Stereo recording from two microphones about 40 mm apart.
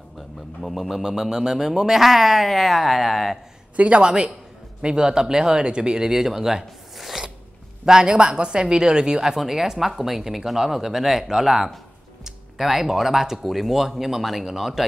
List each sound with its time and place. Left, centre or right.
0.6 s speech: centre
3.7 s speech: right
4.8 s speech: centre